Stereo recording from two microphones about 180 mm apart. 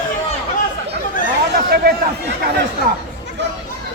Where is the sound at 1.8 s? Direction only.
60° right (ahead or behind).